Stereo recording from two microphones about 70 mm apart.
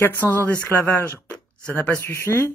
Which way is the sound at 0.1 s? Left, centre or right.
Left.